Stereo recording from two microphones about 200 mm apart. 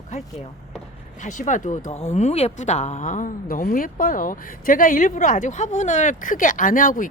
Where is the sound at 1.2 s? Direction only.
40° left (ahead or behind).